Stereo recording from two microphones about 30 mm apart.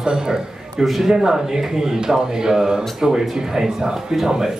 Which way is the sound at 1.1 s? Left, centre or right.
Centre.